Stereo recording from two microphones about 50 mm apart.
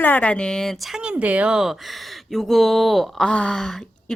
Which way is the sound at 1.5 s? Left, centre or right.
Centre.